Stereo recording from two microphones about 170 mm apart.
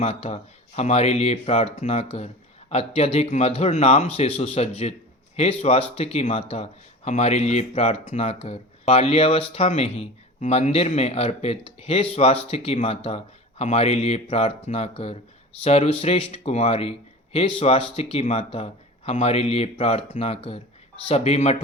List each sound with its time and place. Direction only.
0.0 s speech: 35° left (ahead or behind)